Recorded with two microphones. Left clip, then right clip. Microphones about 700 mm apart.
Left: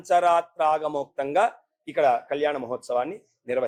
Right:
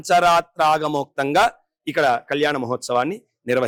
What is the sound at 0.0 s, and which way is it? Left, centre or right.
Speech, right.